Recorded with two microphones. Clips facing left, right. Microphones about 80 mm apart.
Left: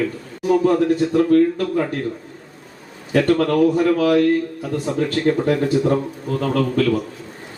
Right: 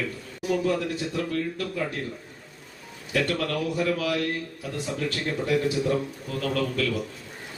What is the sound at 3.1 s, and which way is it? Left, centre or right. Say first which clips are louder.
Speech: left 10 dB; left.